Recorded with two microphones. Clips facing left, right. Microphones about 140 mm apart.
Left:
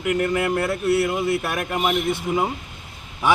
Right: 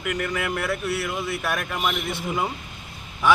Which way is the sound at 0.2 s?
30° left (ahead or behind).